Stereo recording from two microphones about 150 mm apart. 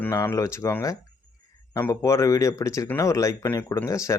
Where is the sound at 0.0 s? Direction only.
15° left (ahead or behind).